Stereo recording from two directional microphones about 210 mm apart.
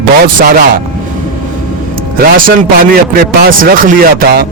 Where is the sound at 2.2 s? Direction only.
40° right (ahead or behind).